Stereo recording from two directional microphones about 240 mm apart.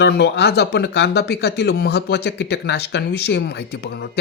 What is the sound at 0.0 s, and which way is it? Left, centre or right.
Speech, left.